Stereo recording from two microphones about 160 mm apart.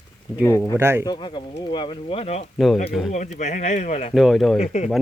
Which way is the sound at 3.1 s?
50° left (ahead or behind).